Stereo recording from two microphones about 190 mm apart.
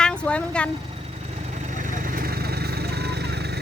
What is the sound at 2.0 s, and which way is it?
Vehicle, 50° right (ahead or behind).